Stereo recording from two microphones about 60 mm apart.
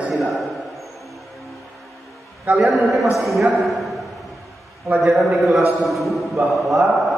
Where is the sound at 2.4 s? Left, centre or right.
Right.